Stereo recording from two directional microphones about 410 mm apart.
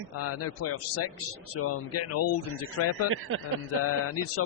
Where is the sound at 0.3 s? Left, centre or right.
Left.